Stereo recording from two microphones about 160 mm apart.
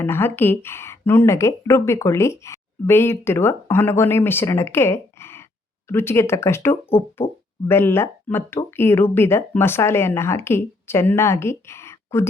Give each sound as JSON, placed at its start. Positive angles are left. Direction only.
{"t": 0.0, "sound": "a woman's voice", "side_deg": 15}